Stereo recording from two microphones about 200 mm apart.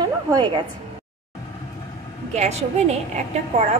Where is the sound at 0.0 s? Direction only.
20° right (ahead or behind).